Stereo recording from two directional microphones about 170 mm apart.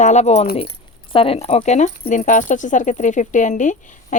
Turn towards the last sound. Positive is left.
turn(degrees=45)  # may be behind; listen again after turning